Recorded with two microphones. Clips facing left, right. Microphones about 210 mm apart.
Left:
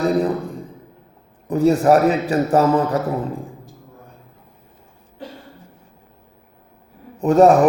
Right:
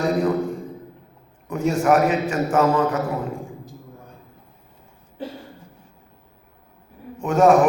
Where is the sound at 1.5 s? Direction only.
35° left (ahead or behind).